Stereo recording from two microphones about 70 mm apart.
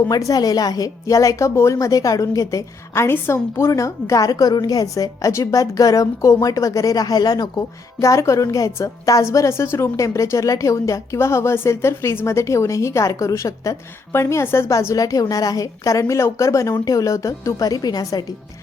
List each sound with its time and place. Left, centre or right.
0.1 s a woman's voice: left
3.7 s speech: left
7.9 s a woman's voice: left